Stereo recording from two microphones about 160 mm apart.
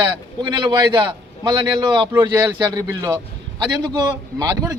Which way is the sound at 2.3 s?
20° right (ahead or behind).